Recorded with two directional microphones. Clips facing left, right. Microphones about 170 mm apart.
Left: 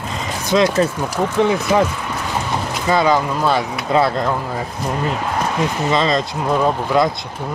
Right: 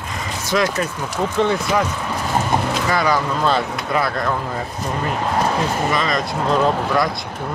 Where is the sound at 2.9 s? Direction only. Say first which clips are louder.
Left 5 dB; 25° left (ahead or behind).